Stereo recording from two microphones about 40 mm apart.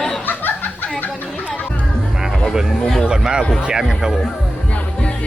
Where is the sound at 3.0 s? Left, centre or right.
Right.